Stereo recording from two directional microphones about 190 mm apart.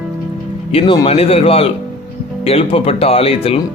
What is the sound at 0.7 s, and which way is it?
Speech, 30° left (ahead or behind).